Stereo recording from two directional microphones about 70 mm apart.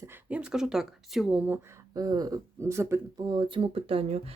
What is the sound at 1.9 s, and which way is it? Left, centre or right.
Speech, right.